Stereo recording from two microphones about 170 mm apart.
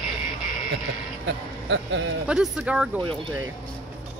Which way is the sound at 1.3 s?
90° right.